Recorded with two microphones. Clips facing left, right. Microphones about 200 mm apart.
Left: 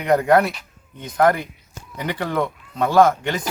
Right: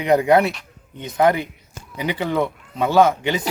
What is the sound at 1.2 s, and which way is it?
Speech, 25° right (ahead or behind).